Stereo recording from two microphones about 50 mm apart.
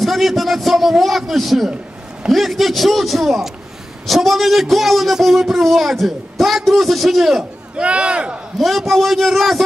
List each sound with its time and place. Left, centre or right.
0.0 s a man's voice: centre
7.7 s speech: right
8.5 s a man's voice: centre